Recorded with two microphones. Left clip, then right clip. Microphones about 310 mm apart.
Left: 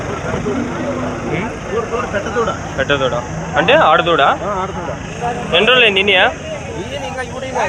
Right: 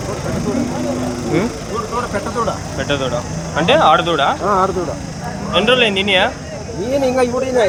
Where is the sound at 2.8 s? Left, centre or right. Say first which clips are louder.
Left 5 dB; centre.